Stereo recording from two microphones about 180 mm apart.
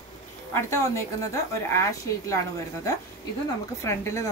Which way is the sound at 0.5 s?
15° left (ahead or behind).